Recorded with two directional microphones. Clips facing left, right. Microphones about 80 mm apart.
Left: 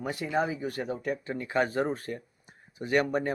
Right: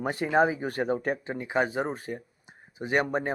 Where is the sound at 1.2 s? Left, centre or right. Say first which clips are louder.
Left 2 dB; centre.